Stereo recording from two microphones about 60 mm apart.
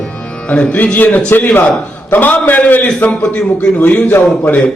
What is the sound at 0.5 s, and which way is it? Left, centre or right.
A man's voice, left.